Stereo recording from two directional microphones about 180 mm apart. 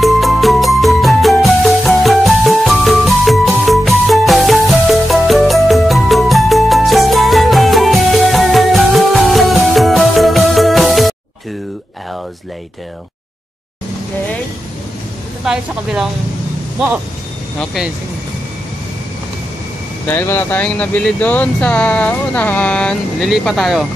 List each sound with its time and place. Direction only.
0.0 s music: centre (ahead or behind)
15.4 s speech: 5° right (ahead or behind)
17.6 s speech: centre (ahead or behind)
20.1 s speech: 10° left (ahead or behind)